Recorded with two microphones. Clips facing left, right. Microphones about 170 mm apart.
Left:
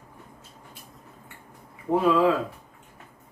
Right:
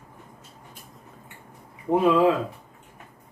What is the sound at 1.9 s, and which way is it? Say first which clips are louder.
Speech: right 2 dB; 20° right (ahead or behind).